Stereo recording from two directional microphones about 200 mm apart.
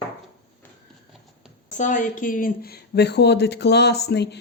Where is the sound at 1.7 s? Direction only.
40° left (ahead or behind).